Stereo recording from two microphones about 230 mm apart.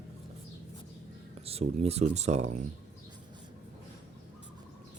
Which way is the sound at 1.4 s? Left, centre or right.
Right.